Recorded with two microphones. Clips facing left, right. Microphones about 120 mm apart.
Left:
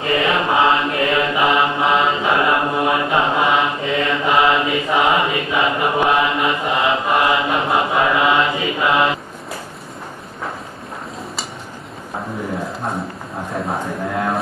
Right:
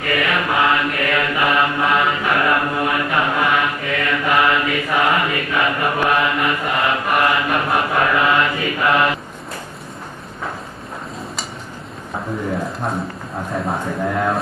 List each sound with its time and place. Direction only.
0.0 s mantra: 25° left (ahead or behind)
12.6 s speech: centre (ahead or behind)